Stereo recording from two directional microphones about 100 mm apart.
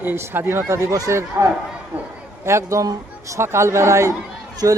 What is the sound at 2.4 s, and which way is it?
A man's voice, 30° right (ahead or behind).